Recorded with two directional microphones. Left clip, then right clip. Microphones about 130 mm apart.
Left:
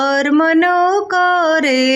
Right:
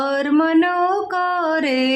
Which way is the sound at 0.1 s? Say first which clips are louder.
Left 4 dB; 30° left (ahead or behind).